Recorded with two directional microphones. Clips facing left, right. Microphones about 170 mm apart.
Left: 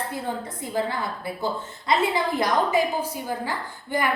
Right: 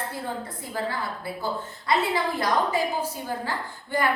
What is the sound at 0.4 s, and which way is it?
A woman's voice, 20° left (ahead or behind).